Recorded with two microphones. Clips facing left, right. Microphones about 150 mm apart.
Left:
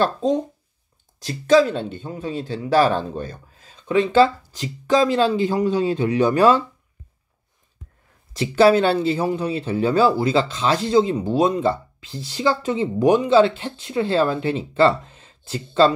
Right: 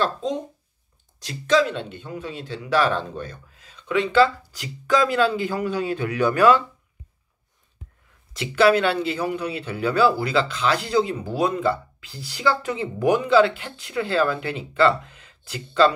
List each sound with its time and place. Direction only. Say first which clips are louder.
0.0 s speech: left 5 dB; 40° left (ahead or behind); by 6.6 s 25° left (ahead or behind)
8.4 s speech: left 3 dB; 30° left (ahead or behind)